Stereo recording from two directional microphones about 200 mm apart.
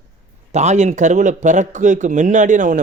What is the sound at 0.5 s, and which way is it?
A man's voice, 35° right (ahead or behind).